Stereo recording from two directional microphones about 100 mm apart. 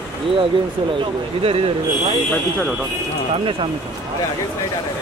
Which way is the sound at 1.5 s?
70° right (ahead or behind).